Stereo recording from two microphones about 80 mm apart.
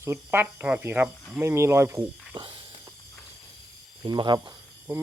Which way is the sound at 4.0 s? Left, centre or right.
Right.